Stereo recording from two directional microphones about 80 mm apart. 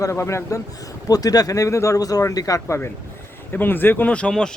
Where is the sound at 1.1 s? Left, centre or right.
Left.